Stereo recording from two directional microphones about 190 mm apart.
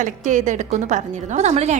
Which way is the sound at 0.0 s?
40° right (ahead or behind).